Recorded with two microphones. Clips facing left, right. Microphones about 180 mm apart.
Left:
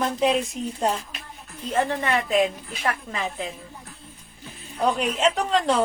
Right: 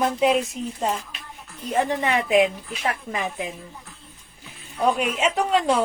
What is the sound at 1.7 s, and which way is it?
A woman's voice, 15° right (ahead or behind).